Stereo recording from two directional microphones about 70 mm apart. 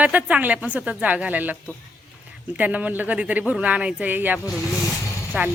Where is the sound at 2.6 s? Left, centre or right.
Right.